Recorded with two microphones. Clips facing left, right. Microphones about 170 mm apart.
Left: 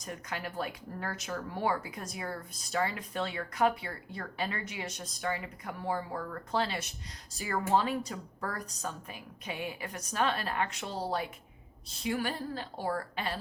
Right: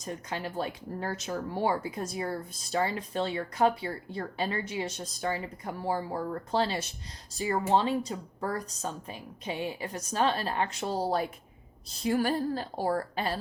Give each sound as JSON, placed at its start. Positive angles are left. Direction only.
{"t": 0.0, "sound": "a woman's voice", "side_deg": -30}